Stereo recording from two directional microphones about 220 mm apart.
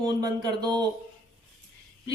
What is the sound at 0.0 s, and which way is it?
Speech, 15° right (ahead or behind).